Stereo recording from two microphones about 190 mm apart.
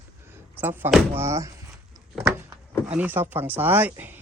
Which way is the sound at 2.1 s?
10° right (ahead or behind).